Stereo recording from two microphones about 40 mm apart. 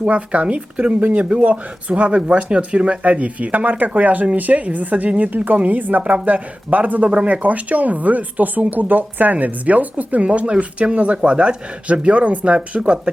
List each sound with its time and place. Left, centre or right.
0.0 s a woman's voice: right